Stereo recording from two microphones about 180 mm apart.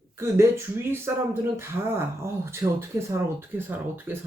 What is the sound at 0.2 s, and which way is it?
Speech, 15° right (ahead or behind).